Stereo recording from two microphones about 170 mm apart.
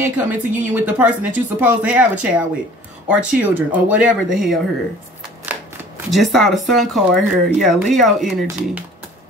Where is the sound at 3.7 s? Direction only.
5° right (ahead or behind).